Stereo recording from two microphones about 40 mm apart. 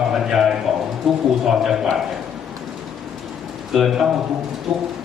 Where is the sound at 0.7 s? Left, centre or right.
Centre.